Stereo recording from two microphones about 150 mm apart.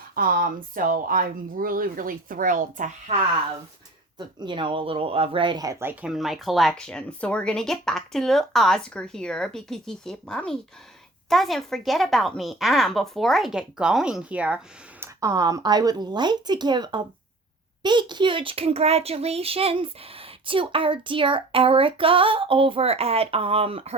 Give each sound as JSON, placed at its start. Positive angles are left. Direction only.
{"t": 0.2, "sound": "speech", "side_deg": -65}
{"t": 4.2, "sound": "speech", "side_deg": -30}
{"t": 5.8, "sound": "speech", "side_deg": -15}
{"t": 6.1, "sound": "speech", "side_deg": 0}
{"t": 15.0, "sound": "speech", "side_deg": -20}